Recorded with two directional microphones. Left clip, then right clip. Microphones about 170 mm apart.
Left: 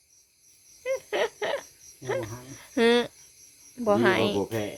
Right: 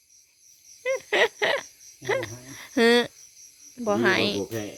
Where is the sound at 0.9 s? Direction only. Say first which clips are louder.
Right 5 dB; 30° right (ahead or behind).